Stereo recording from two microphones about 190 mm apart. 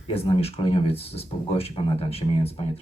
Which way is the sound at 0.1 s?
30° left (ahead or behind).